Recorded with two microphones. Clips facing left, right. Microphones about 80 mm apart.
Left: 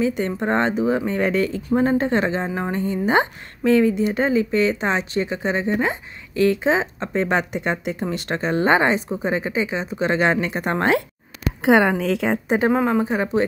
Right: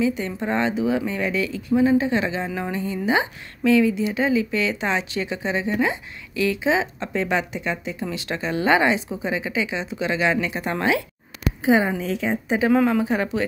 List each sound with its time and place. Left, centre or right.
0.0 s speech: left
2.4 s speech: left
11.6 s a woman's voice: left
12.6 s speech: left